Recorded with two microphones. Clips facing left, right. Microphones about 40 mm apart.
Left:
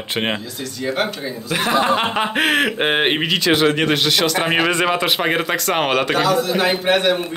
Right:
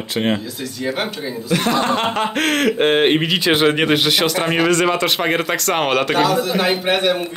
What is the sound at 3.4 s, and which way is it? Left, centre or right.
Speech, centre.